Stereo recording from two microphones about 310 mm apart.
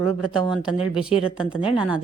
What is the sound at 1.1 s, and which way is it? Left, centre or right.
Speech, centre.